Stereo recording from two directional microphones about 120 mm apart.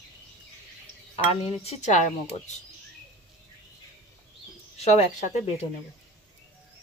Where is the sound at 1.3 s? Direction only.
60° left (ahead or behind); by 2.1 s 90° left.